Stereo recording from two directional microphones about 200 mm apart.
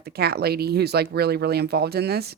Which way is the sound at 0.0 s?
50° right (ahead or behind).